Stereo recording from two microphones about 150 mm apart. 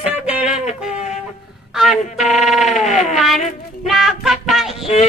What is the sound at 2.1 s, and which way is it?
Speech, 45° left (ahead or behind).